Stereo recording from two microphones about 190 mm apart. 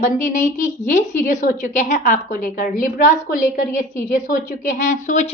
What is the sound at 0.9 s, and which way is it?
A woman's voice, 40° left (ahead or behind).